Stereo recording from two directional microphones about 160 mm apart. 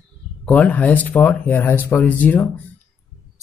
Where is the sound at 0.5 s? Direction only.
10° left (ahead or behind).